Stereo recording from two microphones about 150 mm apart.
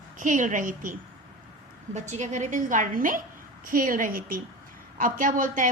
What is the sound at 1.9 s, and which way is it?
A woman's voice, 50° right (ahead or behind).